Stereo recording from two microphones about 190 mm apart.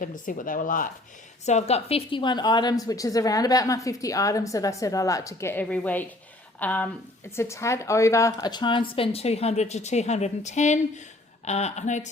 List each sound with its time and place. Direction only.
0.0 s speech: 45° left (ahead or behind)
1.5 s a woman's voice: 35° left (ahead or behind)